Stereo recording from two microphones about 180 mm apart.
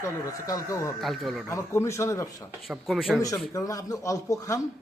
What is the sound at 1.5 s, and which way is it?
Speech, 15° left (ahead or behind).